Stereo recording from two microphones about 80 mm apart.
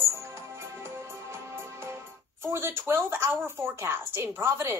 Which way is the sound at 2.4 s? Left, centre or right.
Right.